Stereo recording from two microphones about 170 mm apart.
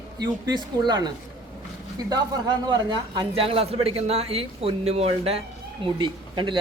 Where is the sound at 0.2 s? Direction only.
25° right (ahead or behind).